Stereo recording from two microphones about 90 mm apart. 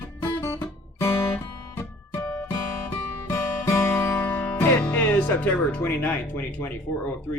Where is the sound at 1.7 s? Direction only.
25° left (ahead or behind).